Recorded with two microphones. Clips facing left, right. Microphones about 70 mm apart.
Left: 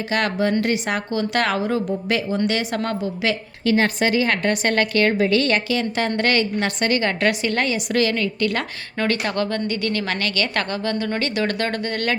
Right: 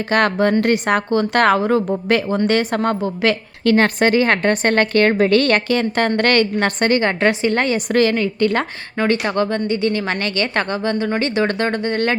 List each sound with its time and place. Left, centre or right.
0.1 s a woman's voice: right
3.2 s a woman's voice: right